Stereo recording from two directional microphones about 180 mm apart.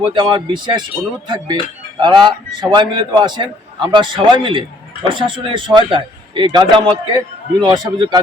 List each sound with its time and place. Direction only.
0.0 s a man's voice: 25° right (ahead or behind)
2.0 s a man's voice: 25° right (ahead or behind)